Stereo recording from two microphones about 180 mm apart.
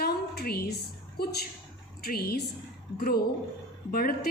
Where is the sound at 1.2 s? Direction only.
60° left (ahead or behind).